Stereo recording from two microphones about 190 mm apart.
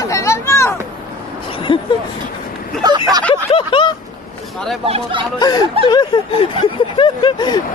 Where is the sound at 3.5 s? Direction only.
25° left (ahead or behind).